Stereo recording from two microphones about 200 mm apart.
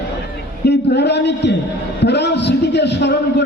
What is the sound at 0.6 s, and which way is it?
A man's voice, 60° left (ahead or behind).